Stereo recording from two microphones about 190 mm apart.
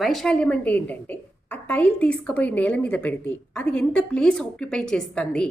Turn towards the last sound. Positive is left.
turn(degrees=5)  # may be behind; listen again after turning